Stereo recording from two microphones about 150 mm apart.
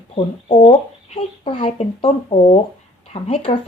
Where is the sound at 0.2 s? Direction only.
35° left (ahead or behind).